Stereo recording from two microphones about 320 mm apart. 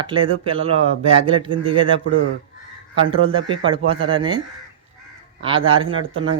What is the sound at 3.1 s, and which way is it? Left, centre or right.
Speech, centre.